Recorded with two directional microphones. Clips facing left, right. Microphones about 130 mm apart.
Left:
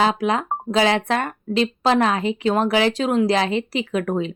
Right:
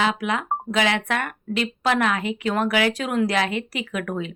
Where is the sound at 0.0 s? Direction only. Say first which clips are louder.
Left 4 dB; 35° left (ahead or behind).